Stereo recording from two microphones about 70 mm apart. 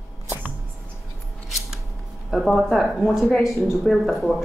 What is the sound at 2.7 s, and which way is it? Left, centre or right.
Speech, centre.